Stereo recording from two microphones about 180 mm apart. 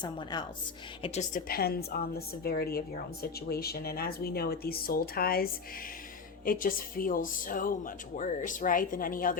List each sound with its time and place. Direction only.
0.0 s a woman's voice: 25° left (ahead or behind)
1.0 s a woman's voice: 40° left (ahead or behind)